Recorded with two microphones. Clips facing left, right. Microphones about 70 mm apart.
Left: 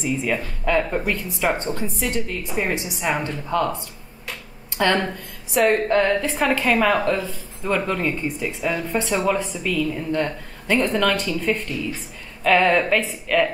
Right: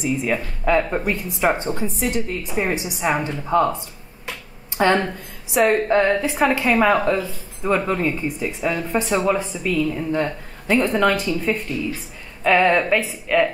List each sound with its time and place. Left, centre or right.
0.0 s speech: centre
4.7 s speech: centre
5.0 s a woman's voice: centre